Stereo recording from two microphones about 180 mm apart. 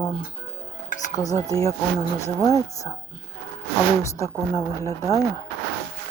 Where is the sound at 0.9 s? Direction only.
45° left (ahead or behind).